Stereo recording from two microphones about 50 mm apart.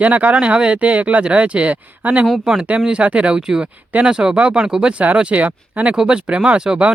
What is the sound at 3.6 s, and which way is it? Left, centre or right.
Speech, right.